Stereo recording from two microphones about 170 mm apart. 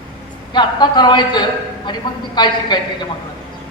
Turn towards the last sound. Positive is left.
turn(degrees=25)  # may be behind; listen again after turning